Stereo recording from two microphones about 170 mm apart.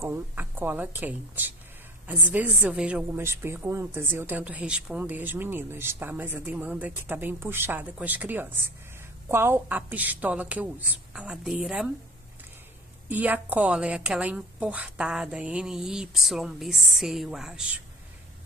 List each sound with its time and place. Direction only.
0.0 s a woman's voice: 15° right (ahead or behind)
13.1 s a woman's voice: 10° right (ahead or behind)